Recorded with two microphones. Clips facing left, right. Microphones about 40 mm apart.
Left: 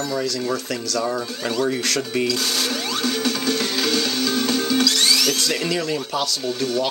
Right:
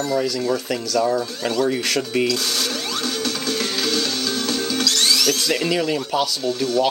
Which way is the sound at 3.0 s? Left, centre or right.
Centre.